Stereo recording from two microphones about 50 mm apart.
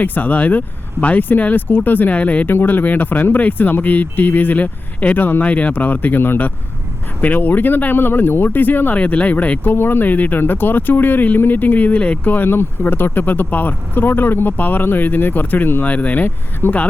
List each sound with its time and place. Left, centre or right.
0.0 s speech: left
2.5 s speech: left
9.0 s speech: left
9.7 s speech: left